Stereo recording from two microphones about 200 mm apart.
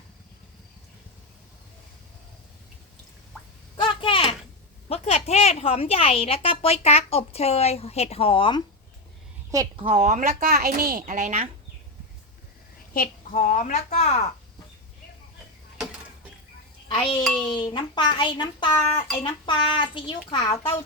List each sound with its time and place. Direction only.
3.8 s a sound: 25° left (ahead or behind)
4.9 s a woman's voice: 30° left (ahead or behind)
9.5 s a woman's voice: 20° right (ahead or behind)
9.8 s speech: 30° right (ahead or behind)
12.9 s a woman's voice: 45° left (ahead or behind)
16.9 s speech: 25° left (ahead or behind)
17.2 s speech: centre (ahead or behind)
17.5 s speech: 25° left (ahead or behind)